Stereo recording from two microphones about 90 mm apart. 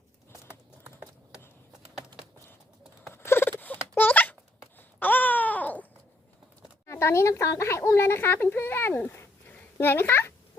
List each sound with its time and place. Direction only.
3.1 s a sound: 25° left (ahead or behind)
4.8 s babbling: 20° left (ahead or behind)
6.8 s speech: 30° left (ahead or behind)